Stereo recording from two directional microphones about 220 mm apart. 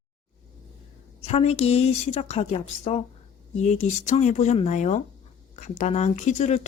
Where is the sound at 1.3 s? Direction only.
30° left (ahead or behind).